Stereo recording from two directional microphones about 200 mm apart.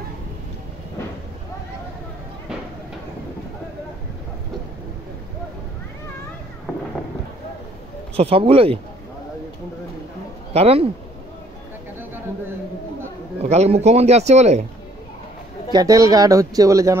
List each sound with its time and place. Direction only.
8.2 s speech: 30° right (ahead or behind)
10.5 s speech: 30° right (ahead or behind)
13.5 s speech: 30° right (ahead or behind)
15.7 s speech: 15° right (ahead or behind)